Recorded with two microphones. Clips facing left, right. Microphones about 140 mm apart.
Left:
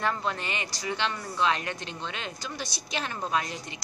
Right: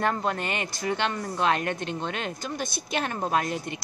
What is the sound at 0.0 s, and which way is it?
Speech, 50° right (ahead or behind).